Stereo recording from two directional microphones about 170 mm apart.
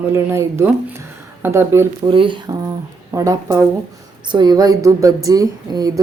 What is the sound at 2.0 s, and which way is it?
A woman's voice, 30° right (ahead or behind).